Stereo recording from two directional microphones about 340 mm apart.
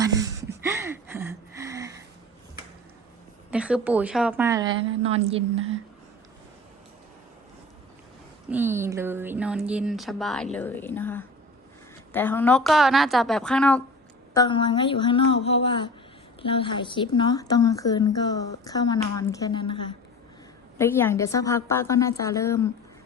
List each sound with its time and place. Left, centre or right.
0.0 s a sound: centre
3.5 s speech: centre
8.4 s speech: centre